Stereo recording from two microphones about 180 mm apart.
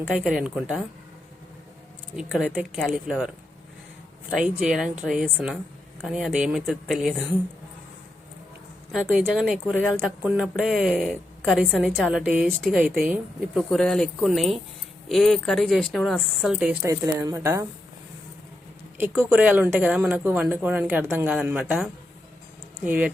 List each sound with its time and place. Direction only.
0.4 s speech: 5° right (ahead or behind)
2.1 s speech: 5° right (ahead or behind)
4.4 s speech: 5° right (ahead or behind)
8.9 s speech: 5° right (ahead or behind)
16.8 s speech: 15° right (ahead or behind)
19.2 s speech: 10° right (ahead or behind)